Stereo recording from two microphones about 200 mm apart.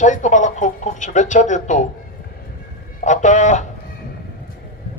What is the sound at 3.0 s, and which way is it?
Speech, 35° left (ahead or behind).